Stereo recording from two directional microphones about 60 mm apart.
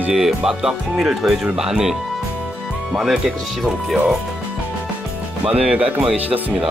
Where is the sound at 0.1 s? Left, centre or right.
Centre.